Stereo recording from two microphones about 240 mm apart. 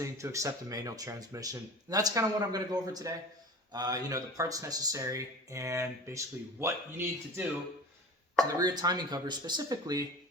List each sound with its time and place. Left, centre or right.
0.0 s speech: centre